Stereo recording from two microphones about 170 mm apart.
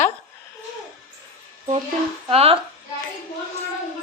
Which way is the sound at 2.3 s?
35° right (ahead or behind).